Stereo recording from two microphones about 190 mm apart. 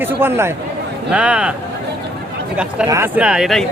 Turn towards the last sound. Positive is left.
turn(degrees=0)  # may be behind; listen again after turning